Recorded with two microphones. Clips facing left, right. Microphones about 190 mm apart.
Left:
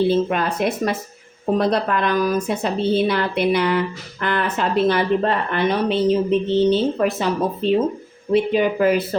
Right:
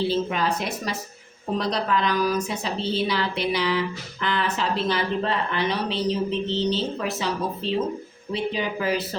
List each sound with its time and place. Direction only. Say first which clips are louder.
0.1 s a woman's voice: left 5 dB; 55° left (ahead or behind)